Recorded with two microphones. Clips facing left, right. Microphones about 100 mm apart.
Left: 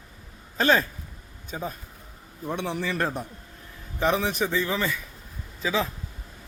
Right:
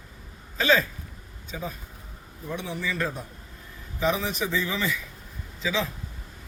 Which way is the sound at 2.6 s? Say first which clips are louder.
Left 2 dB; 65° left (ahead or behind).